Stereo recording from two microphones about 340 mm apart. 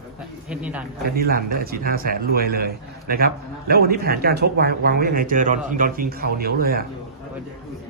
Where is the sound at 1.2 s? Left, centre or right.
Right.